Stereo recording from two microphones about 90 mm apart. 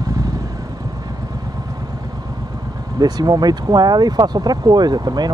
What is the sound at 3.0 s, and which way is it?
Speech, 45° right (ahead or behind).